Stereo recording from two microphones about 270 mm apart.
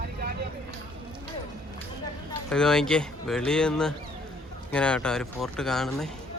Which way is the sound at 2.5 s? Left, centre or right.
Centre.